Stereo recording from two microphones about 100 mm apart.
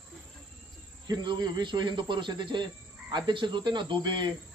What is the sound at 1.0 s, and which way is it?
Speech, 45° right (ahead or behind).